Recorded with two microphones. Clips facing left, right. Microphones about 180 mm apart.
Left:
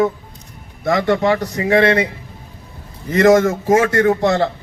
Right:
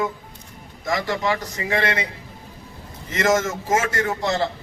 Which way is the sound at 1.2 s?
40° left (ahead or behind).